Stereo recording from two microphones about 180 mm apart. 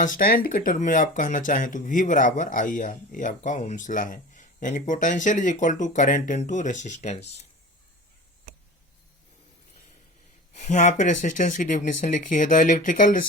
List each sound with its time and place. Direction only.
0.0 s speech: 50° left (ahead or behind)
10.5 s speech: 40° left (ahead or behind)